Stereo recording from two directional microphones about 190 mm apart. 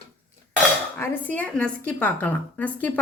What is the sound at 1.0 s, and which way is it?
A woman's voice, 10° left (ahead or behind).